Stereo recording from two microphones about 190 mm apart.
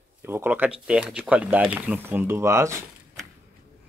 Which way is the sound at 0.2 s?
10° right (ahead or behind).